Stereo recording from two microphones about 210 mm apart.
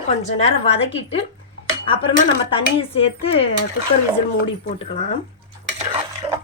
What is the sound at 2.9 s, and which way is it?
A woman's voice, 25° left (ahead or behind).